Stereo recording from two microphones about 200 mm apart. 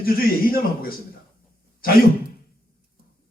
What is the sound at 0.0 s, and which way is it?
Speech, 45° left (ahead or behind).